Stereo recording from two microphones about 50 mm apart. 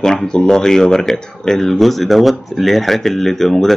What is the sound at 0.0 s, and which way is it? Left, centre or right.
Speech, centre.